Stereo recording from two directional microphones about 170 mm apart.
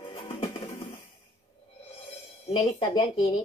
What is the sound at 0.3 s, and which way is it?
Music, 30° left (ahead or behind).